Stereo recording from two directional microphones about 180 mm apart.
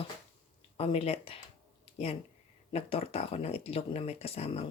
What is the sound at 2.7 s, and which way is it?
Speech, 35° left (ahead or behind).